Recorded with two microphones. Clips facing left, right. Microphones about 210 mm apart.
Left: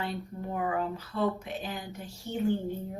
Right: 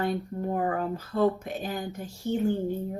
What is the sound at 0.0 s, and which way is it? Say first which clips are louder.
Speech: right 7 dB; 45° right (ahead or behind).